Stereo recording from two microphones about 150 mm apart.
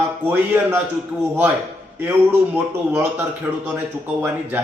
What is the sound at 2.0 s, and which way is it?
Speech, 15° right (ahead or behind).